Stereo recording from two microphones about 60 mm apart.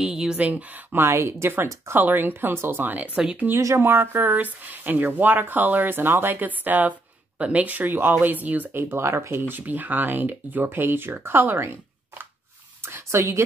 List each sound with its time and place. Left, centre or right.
0.0 s a sound: centre
0.4 s speech: right
0.9 s a woman's voice: right
3.5 s speech: right
9.6 s speech: right